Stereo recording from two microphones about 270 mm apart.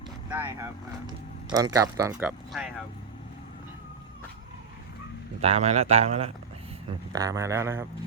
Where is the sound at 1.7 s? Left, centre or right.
Centre.